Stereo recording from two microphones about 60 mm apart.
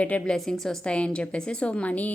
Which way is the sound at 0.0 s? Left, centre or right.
Left.